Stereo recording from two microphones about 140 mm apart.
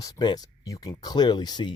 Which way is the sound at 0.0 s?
30° left (ahead or behind).